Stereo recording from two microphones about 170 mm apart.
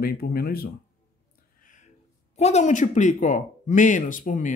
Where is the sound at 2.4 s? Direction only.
40° left (ahead or behind).